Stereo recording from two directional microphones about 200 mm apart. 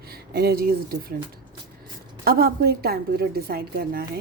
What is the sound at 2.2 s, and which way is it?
A woman's voice, 50° right (ahead or behind).